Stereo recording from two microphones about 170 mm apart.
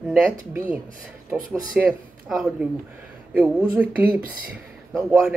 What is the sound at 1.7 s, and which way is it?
Speech, 5° right (ahead or behind).